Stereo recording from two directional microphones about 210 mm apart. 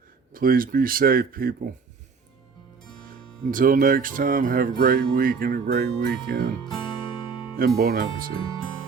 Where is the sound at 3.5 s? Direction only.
40° right (ahead or behind).